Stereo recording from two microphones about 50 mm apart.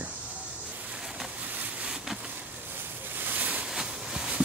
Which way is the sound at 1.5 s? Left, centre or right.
Right.